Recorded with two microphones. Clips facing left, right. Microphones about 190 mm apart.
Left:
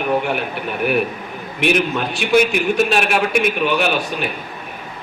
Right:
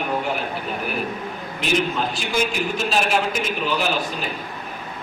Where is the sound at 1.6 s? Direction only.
65° left (ahead or behind).